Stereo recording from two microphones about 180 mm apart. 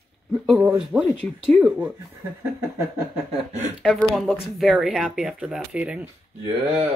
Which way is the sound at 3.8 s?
Centre (ahead or behind).